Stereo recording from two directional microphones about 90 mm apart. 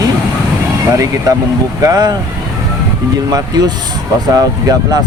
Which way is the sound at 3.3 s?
45° right (ahead or behind).